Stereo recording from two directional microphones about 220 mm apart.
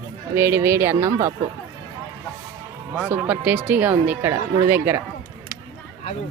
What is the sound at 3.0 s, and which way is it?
Speech, 10° right (ahead or behind).